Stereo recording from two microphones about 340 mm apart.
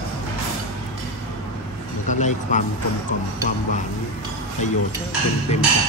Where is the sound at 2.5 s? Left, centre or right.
Left.